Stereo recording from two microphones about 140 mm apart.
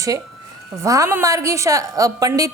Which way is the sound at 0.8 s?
20° right (ahead or behind).